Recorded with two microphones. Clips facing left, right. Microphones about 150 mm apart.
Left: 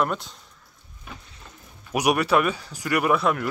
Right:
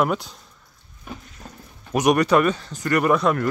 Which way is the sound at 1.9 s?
10° left (ahead or behind).